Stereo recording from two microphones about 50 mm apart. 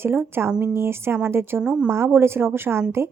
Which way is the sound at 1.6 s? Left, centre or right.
Centre.